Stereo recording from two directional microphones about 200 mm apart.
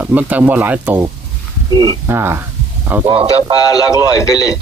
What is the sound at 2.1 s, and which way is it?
Speech, 10° right (ahead or behind).